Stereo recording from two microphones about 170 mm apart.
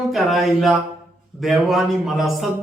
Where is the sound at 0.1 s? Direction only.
Centre (ahead or behind).